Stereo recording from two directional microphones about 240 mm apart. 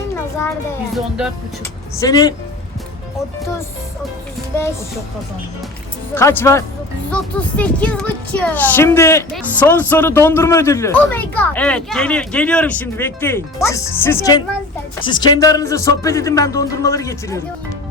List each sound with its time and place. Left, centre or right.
0.9 s speech: centre
2.0 s speech: centre
6.1 s speech: centre